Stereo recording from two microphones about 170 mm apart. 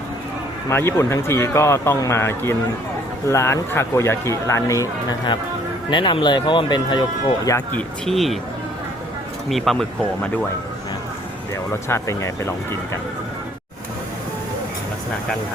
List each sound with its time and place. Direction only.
0.7 s speech: 15° left (ahead or behind)
7.7 s speech: 5° left (ahead or behind)
9.5 s speech: centre (ahead or behind)
11.7 s speech: 15° left (ahead or behind)